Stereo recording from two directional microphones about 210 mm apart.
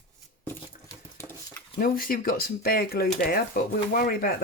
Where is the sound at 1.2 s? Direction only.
15° left (ahead or behind).